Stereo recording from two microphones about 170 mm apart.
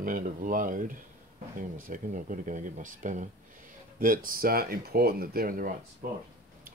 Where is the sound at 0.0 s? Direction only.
55° right (ahead or behind).